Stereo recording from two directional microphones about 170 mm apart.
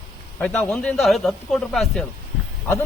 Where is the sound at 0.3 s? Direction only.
10° left (ahead or behind).